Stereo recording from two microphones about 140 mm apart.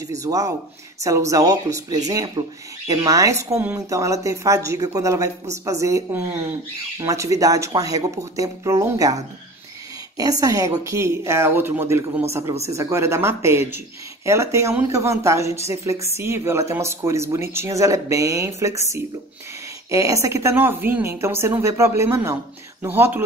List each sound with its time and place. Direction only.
0.1 s speech: 25° right (ahead or behind)